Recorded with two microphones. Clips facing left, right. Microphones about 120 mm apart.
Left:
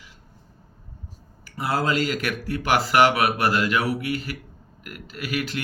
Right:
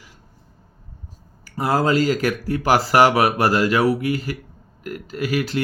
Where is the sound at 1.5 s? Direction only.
40° right (ahead or behind).